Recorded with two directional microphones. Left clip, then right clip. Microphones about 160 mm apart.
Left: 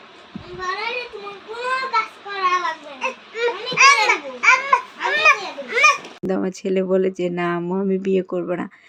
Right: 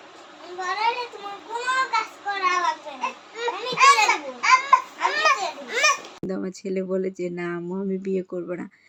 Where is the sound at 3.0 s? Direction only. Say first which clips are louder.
Left 6 dB; 15° left (ahead or behind).